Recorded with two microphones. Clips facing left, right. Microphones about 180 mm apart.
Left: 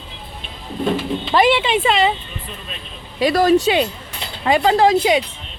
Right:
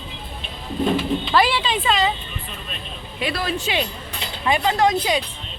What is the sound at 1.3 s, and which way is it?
Speech, 20° left (ahead or behind).